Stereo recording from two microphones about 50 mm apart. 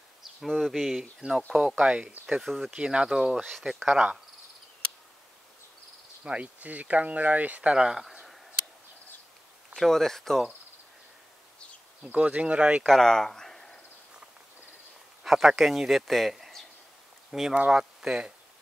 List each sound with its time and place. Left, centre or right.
0.5 s speech: centre
1.2 s speech: right
2.4 s speech: centre
2.7 s speech: centre
6.2 s speech: right
7.7 s speech: centre
8.0 s a sound: centre
9.8 s speech: centre
12.0 s speech: right
12.8 s speech: centre
15.2 s a man's voice: centre